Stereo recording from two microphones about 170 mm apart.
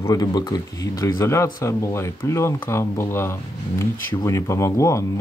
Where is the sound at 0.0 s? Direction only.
20° left (ahead or behind).